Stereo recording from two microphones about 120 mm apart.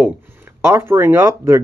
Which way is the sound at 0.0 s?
15° right (ahead or behind).